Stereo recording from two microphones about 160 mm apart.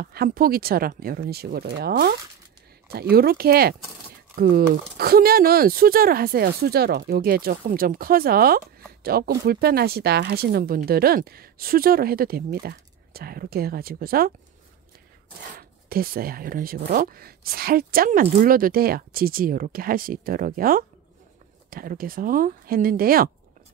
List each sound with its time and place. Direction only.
0.0 s speech: 70° right (ahead or behind)
15.9 s speech: 65° right (ahead or behind)